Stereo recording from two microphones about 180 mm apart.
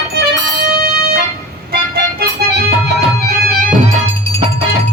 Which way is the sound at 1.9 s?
60° right (ahead or behind).